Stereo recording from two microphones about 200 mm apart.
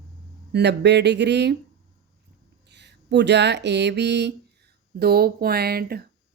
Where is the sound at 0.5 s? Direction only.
60° right (ahead or behind).